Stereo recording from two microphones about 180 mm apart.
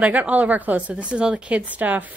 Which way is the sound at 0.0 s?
10° right (ahead or behind).